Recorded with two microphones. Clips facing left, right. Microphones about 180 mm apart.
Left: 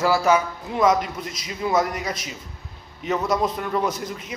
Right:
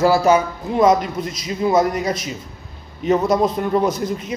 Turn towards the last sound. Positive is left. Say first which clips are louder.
# right 6 dB
turn(degrees=-30)  # may be behind; listen again after turning